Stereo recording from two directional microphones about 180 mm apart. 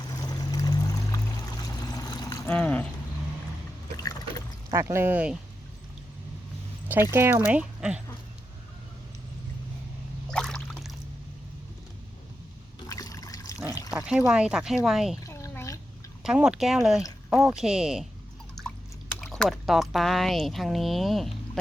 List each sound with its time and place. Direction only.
0.2 s pour: 20° left (ahead or behind)
1.6 s vehicle: 20° left (ahead or behind)
2.5 s speech: 10° left (ahead or behind)
3.9 s liquid: 20° left (ahead or behind)
4.7 s speech: 15° right (ahead or behind)
7.1 s speech: 15° right (ahead or behind)
10.3 s a sound: 5° left (ahead or behind)
12.9 s liquid: 20° left (ahead or behind)
13.9 s speech: 5° right (ahead or behind)
15.3 s a sound: 15° left (ahead or behind)
16.2 s a woman's voice: 5° right (ahead or behind)
19.2 s speech: 5° left (ahead or behind)